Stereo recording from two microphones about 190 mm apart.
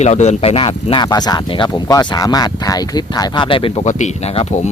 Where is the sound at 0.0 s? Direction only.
35° left (ahead or behind).